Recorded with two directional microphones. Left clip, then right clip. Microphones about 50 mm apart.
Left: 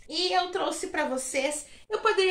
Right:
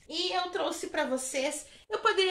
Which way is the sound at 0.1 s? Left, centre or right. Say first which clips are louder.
Left 5 dB; centre.